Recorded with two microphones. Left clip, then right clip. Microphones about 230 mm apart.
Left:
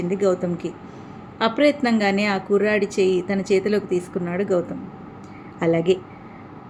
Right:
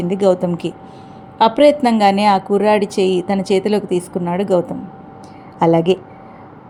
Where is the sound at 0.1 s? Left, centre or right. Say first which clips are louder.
Right 7 dB; right.